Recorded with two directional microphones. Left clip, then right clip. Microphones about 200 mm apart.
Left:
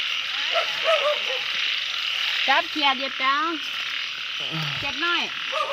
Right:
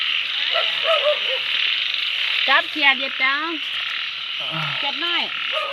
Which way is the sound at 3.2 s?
5° left (ahead or behind).